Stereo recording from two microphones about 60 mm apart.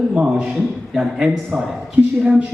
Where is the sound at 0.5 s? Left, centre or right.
Centre.